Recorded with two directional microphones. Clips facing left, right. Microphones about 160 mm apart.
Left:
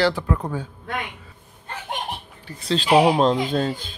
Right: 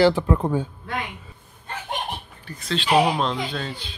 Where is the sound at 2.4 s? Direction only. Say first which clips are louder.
Left 3 dB; 30° left (ahead or behind).